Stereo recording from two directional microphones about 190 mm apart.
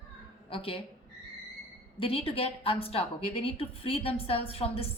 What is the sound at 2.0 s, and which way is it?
A woman's voice, 30° left (ahead or behind).